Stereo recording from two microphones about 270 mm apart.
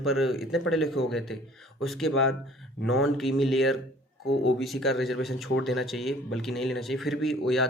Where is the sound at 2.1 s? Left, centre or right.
Left.